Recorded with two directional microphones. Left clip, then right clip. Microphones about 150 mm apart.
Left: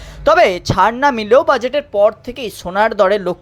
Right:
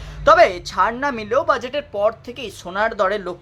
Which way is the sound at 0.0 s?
20° left (ahead or behind).